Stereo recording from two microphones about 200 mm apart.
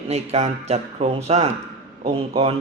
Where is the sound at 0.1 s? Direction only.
35° right (ahead or behind).